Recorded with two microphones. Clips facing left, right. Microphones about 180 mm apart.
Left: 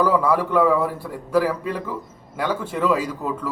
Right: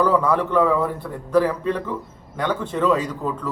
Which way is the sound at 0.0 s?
10° left (ahead or behind).